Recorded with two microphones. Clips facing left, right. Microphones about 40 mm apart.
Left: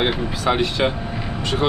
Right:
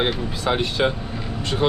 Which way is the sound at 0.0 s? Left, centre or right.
Left.